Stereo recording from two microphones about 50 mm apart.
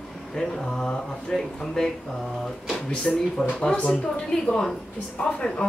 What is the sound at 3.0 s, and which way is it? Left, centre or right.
Speech, centre.